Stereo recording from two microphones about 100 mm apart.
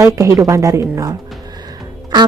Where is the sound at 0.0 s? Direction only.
30° right (ahead or behind).